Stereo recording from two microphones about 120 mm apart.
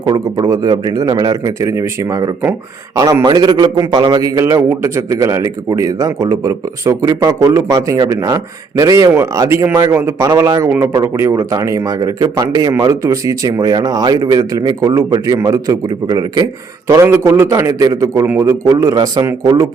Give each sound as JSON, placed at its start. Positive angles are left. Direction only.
{"t": 0.0, "sound": "speech", "side_deg": -35}
{"t": 3.2, "sound": "a man's voice", "side_deg": -35}
{"t": 16.9, "sound": "a man's voice", "side_deg": -20}